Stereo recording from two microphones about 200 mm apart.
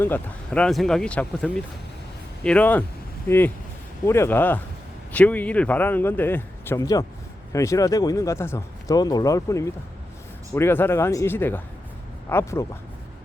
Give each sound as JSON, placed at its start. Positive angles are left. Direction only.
{"t": 0.0, "sound": "speech", "side_deg": 10}